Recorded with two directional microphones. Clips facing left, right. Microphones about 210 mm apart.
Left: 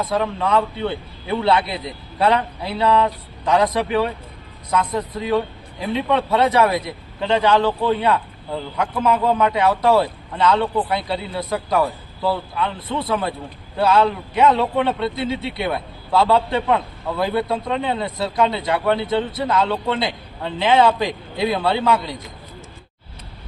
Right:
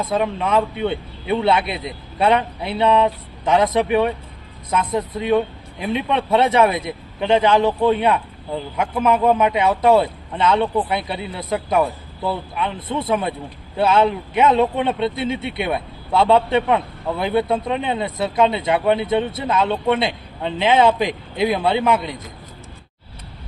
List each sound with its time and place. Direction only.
0.0 s a man's voice: 20° right (ahead or behind)